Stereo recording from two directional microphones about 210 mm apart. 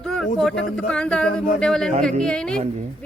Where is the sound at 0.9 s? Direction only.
5° left (ahead or behind).